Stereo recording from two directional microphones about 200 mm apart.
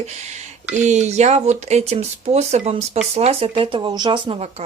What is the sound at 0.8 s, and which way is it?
Speech, 35° right (ahead or behind).